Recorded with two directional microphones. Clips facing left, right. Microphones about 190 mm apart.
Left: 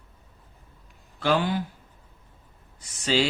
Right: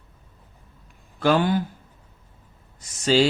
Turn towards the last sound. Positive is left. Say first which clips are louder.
# right 5 dB
turn(degrees=-40)  # may be behind; listen again after turning